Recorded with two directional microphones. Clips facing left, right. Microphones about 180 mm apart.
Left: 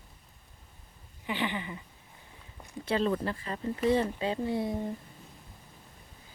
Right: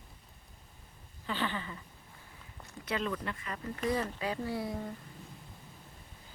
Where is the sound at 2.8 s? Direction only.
30° left (ahead or behind).